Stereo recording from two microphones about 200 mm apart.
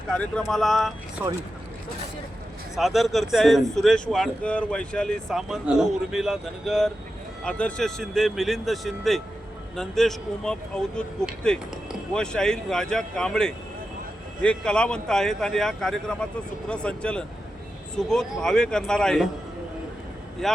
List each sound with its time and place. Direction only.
0.1 s speech: 5° left (ahead or behind)
1.2 s speech: 15° right (ahead or behind)
2.7 s speech: centre (ahead or behind)
20.4 s speech: centre (ahead or behind)